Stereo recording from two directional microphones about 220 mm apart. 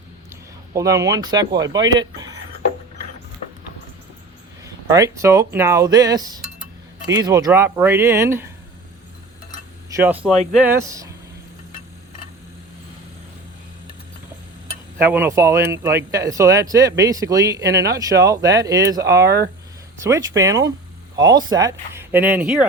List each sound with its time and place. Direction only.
0.3 s speech: 15° right (ahead or behind)
4.6 s speech: 15° right (ahead or behind)
9.9 s speech: 10° right (ahead or behind)
15.0 s speech: 10° right (ahead or behind)